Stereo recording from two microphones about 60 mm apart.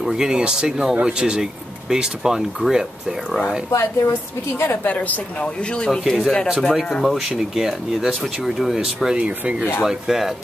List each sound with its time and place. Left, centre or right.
0.0 s speech: centre
3.3 s speech: centre
3.7 s a woman's voice: left
4.6 s a woman's voice: left
4.9 s speech: left
5.9 s speech: centre
7.2 s speech: centre
9.2 s speech: right
9.8 s speech: centre